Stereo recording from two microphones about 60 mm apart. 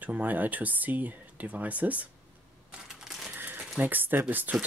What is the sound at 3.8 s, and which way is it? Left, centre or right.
Speech, right.